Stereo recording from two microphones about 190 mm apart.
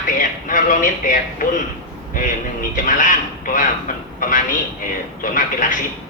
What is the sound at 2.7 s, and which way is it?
A man's voice, 45° left (ahead or behind).